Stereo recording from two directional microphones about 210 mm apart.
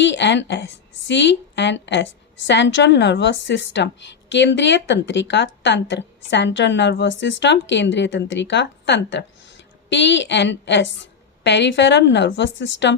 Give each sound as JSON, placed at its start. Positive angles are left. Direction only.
{"t": 0.0, "sound": "a woman's voice", "side_deg": 55}